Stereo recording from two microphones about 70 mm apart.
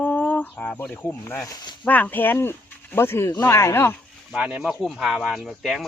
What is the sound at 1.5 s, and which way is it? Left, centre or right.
Speech, left.